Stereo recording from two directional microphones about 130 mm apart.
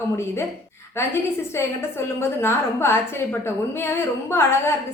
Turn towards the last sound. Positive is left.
turn(degrees=20)  # may be behind; listen again after turning